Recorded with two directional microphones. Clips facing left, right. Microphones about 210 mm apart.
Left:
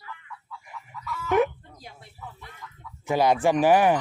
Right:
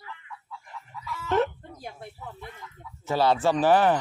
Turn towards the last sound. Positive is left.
turn(degrees=10)  # may be behind; listen again after turning